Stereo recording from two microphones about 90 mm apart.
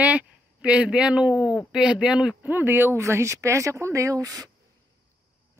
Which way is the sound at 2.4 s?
20° right (ahead or behind).